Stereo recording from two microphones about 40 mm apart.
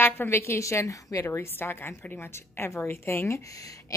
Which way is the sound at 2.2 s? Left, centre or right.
Left.